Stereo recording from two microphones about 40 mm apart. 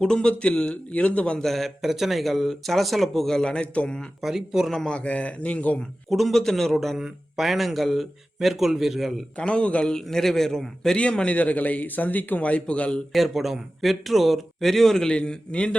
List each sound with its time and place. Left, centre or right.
0.0 s a man's voice: centre
1.4 s speech: centre
1.8 s speech: centre; by 4.1 s left
4.2 s speech: centre
4.7 s a man's voice: centre
4.9 s speech: left
6.1 s speech: centre
7.0 s speech: centre
9.4 s a man's voice: left
9.8 s a man's voice: centre
10.9 s a man's voice: left
11.3 s speech: left
13.1 s speech: centre
15.1 s a man's voice: left